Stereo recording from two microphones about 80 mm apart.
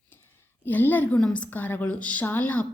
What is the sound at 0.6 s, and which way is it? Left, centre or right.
Speech, left.